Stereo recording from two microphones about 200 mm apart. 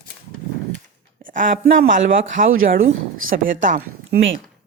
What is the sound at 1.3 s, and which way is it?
A woman's voice, 40° right (ahead or behind).